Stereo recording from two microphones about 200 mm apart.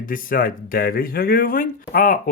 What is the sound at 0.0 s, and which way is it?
Speech, 45° left (ahead or behind).